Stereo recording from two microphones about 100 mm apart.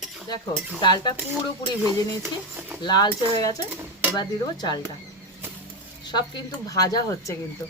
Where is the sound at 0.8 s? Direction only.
50° left (ahead or behind).